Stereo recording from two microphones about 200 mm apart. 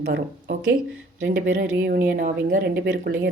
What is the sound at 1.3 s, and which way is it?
A woman's voice, 45° right (ahead or behind).